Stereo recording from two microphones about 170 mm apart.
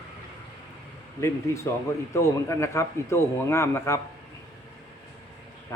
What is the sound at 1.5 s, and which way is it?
A man's voice, 20° left (ahead or behind).